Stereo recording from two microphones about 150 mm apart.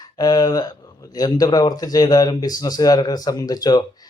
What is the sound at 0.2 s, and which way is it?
Speech, 25° left (ahead or behind).